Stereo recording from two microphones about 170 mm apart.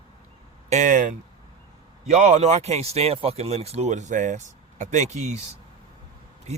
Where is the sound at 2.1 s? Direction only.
45° right (ahead or behind).